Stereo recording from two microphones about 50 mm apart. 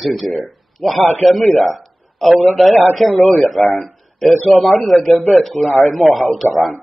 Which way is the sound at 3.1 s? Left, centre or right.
Left.